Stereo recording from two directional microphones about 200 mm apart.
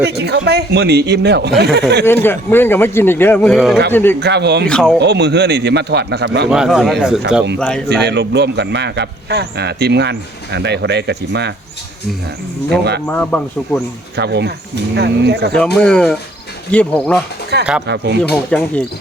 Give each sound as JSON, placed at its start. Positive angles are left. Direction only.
{"t": 0.0, "sound": "speech", "side_deg": -55}
{"t": 2.0, "sound": "a man's voice", "side_deg": 10}
{"t": 3.9, "sound": "a man's voice", "side_deg": 10}
{"t": 4.2, "sound": "speech", "side_deg": -55}
{"t": 4.6, "sound": "speech", "side_deg": 5}
{"t": 4.9, "sound": "speech", "side_deg": -55}
{"t": 6.5, "sound": "speech", "side_deg": 0}
{"t": 8.0, "sound": "speech", "side_deg": -55}
{"t": 13.1, "sound": "a man's voice", "side_deg": 5}
{"t": 14.2, "sound": "speech", "side_deg": -55}
{"t": 15.5, "sound": "speech", "side_deg": 5}
{"t": 17.5, "sound": "speech", "side_deg": -55}
{"t": 18.2, "sound": "speech", "side_deg": 5}